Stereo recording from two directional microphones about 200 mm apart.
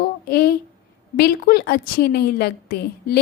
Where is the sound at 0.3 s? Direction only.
55° left (ahead or behind).